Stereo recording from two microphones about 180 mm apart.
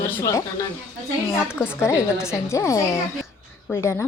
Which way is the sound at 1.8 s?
15° left (ahead or behind).